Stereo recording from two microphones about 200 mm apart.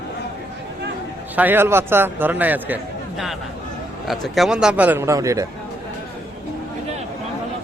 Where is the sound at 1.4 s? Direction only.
10° right (ahead or behind).